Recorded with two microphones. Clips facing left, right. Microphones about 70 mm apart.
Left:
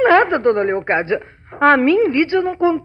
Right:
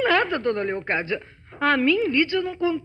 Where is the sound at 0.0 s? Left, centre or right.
Left.